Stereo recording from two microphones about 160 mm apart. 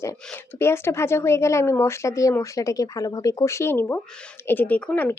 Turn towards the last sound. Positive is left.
turn(degrees=10)  # may be behind; listen again after turning